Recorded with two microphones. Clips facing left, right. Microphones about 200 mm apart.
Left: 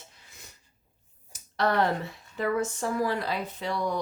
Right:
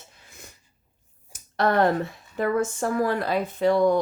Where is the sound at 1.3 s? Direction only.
50° right (ahead or behind).